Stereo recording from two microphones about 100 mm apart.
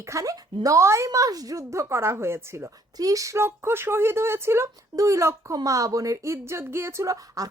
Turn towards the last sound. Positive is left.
turn(degrees=-35)  # may be behind; listen again after turning